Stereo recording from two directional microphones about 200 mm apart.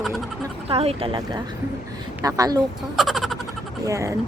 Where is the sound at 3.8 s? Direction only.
15° right (ahead or behind).